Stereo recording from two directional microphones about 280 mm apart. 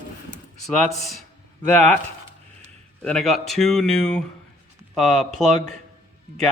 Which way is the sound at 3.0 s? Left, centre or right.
Centre.